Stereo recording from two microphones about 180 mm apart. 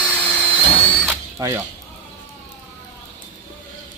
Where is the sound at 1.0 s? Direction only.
15° right (ahead or behind).